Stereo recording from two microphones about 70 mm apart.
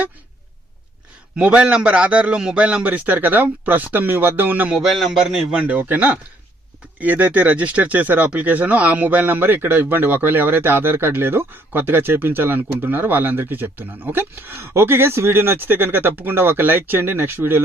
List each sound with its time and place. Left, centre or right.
1.4 s a man's voice: centre
4.7 s a man's voice: centre
5.5 s speech: centre